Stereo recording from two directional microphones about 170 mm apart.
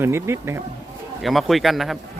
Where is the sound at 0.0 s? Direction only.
15° right (ahead or behind).